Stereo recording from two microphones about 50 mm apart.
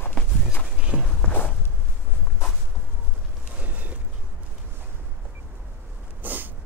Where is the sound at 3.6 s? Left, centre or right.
Right.